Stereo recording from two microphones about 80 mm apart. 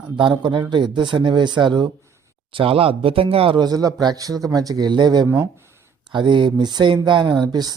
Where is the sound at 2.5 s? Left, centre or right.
Right.